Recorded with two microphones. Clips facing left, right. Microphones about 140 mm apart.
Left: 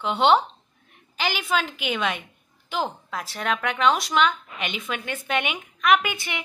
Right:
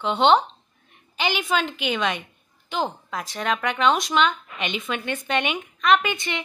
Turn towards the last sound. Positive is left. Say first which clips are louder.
# right 1 dB
turn(degrees=5)  # may be behind; listen again after turning